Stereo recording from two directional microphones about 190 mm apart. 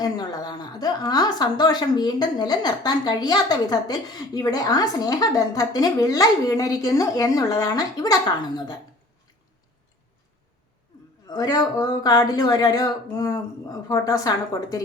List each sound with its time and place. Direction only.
0.0 s a woman's voice: 20° left (ahead or behind)
11.3 s a woman's voice: 20° left (ahead or behind)